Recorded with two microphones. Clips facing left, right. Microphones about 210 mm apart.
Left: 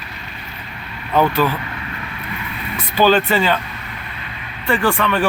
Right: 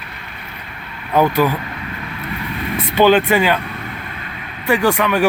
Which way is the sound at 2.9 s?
15° right (ahead or behind).